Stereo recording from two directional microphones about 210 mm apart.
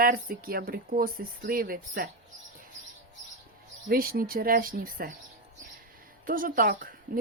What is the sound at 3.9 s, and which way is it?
Speech, 45° right (ahead or behind).